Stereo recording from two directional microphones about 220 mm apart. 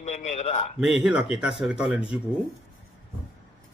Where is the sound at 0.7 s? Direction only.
Centre (ahead or behind).